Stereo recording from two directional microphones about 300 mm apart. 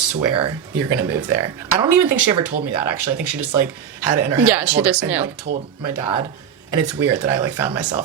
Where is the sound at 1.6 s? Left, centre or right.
Left.